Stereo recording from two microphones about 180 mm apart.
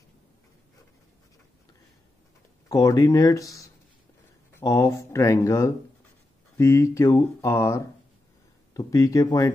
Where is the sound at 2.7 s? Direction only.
20° left (ahead or behind).